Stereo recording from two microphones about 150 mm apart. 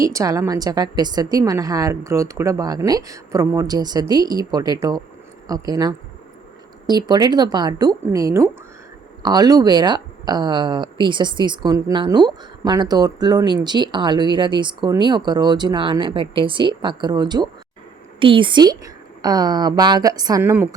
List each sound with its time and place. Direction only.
0.0 s a woman's voice: 20° right (ahead or behind)
20.4 s a woman's voice: 15° right (ahead or behind)